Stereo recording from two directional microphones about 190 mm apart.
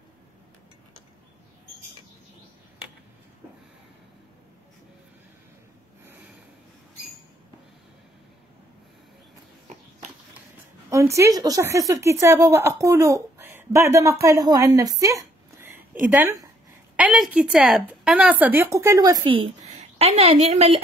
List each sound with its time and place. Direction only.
10.9 s a woman's voice: 15° right (ahead or behind); by 20.8 s 35° right (ahead or behind)